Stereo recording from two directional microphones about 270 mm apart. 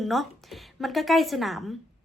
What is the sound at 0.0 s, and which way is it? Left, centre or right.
A woman's voice, centre.